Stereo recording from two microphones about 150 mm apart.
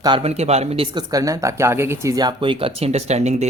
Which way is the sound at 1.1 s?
20° right (ahead or behind).